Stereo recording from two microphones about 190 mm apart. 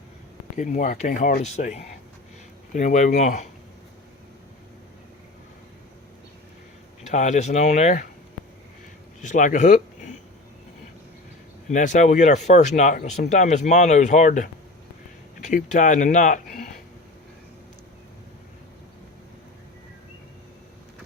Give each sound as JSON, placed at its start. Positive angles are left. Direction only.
{"t": 0.5, "sound": "speech", "side_deg": 40}
{"t": 7.1, "sound": "speech", "side_deg": 40}
{"t": 9.2, "sound": "speech", "side_deg": 40}
{"t": 11.7, "sound": "speech", "side_deg": 40}